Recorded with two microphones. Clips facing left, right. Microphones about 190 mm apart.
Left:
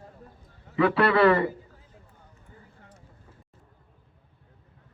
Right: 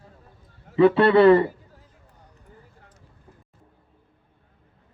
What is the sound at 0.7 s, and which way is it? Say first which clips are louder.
Speech: right 6 dB; 25° right (ahead or behind).